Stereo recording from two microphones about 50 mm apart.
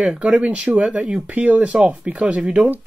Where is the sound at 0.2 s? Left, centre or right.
Right.